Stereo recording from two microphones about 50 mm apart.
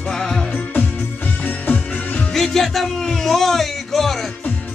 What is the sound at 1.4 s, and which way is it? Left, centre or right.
Music, left.